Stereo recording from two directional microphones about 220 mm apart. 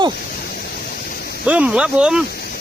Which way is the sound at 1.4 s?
5° right (ahead or behind).